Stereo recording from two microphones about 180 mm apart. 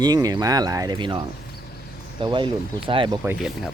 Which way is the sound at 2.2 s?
25° right (ahead or behind).